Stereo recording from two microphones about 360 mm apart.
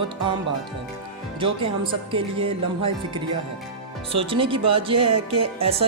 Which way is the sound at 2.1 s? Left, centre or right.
Centre.